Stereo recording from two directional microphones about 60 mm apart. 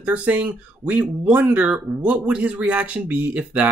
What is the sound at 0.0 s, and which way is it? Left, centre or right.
Speech, right.